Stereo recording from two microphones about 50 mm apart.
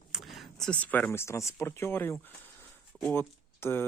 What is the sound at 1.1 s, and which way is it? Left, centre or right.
Speech, left.